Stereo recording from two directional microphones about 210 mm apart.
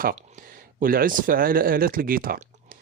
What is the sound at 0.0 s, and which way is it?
Speech, 40° right (ahead or behind).